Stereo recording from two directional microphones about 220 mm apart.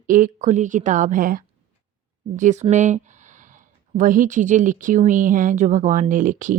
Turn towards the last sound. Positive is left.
turn(degrees=-35)  # may be behind; listen again after turning